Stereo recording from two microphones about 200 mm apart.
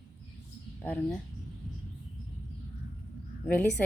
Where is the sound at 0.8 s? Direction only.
10° left (ahead or behind).